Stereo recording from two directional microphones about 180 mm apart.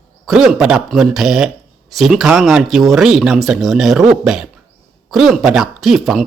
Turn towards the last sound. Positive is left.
turn(degrees=0)  # may be behind; listen again after turning